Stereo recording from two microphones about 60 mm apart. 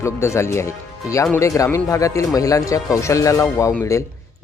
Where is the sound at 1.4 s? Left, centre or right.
Left.